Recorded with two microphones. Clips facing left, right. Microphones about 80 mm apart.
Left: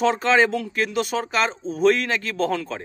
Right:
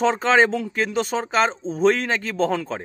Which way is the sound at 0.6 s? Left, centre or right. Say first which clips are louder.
Right 1 dB; right.